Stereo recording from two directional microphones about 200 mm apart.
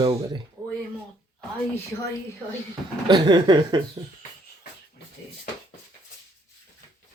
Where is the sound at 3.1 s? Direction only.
20° right (ahead or behind).